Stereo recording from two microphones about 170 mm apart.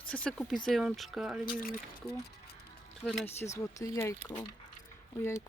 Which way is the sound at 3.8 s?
20° left (ahead or behind).